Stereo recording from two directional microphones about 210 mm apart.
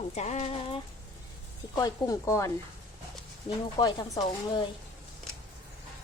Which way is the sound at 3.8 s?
20° left (ahead or behind).